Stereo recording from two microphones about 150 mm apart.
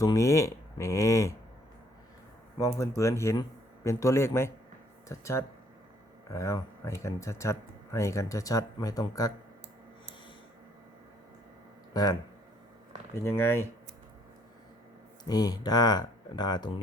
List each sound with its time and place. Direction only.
0.0 s speech: 20° left (ahead or behind)
2.6 s a man's voice: 20° left (ahead or behind)
13.2 s a man's voice: 15° left (ahead or behind)
15.2 s speech: 25° left (ahead or behind)